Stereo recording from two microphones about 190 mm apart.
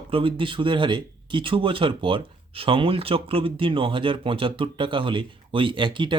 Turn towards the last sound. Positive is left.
turn(degrees=-25)  # may be behind; listen again after turning